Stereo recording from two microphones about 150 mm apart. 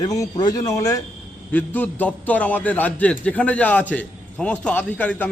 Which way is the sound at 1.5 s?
10° left (ahead or behind).